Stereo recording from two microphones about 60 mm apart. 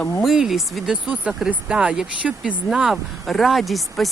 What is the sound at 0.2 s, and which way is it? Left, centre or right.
Speech, centre.